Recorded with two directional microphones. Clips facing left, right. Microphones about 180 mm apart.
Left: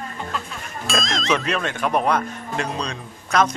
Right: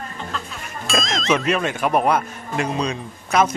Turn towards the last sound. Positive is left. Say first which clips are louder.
# right 1 dB
turn(degrees=-5)  # may be behind; listen again after turning